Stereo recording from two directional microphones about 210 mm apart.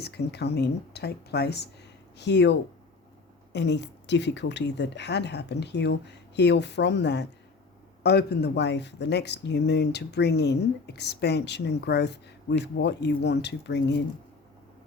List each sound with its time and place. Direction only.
0.0 s speech: 50° left (ahead or behind)